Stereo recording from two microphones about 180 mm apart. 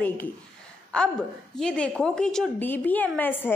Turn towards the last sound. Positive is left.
turn(degrees=10)  # may be behind; listen again after turning